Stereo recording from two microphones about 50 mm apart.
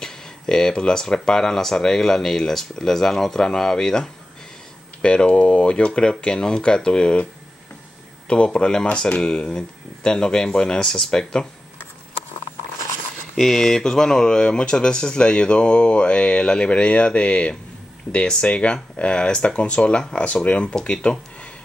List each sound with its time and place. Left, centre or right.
0.0 s speech: centre
8.5 s speech: centre
13.4 s speech: centre